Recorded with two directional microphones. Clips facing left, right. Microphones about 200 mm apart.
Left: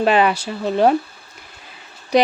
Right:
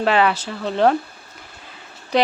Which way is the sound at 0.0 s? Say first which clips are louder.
Left 2 dB; 15° left (ahead or behind).